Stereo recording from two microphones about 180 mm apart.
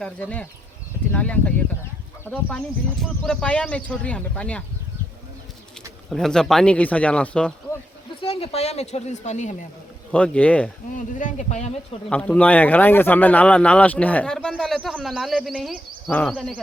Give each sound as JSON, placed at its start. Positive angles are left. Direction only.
{"t": 0.0, "sound": "speech", "side_deg": 5}
{"t": 6.1, "sound": "speech", "side_deg": 5}
{"t": 8.2, "sound": "a woman's voice", "side_deg": 35}
{"t": 10.1, "sound": "speech", "side_deg": 5}
{"t": 10.9, "sound": "a woman's voice", "side_deg": 45}
{"t": 12.0, "sound": "speech", "side_deg": 5}